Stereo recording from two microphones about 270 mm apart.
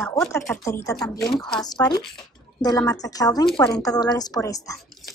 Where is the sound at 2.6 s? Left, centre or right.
Centre.